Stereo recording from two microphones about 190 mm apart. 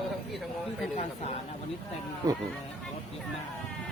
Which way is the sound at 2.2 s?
20° right (ahead or behind).